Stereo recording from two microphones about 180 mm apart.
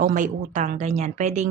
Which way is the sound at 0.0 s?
45° right (ahead or behind).